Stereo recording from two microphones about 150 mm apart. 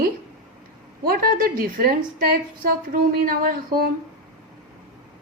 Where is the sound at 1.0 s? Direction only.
75° right (ahead or behind).